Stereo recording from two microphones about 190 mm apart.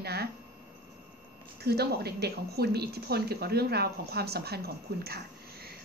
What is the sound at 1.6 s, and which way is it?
A woman's voice, 55° right (ahead or behind).